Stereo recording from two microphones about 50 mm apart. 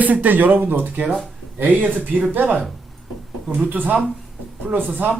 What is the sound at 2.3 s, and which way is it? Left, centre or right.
Speech, right.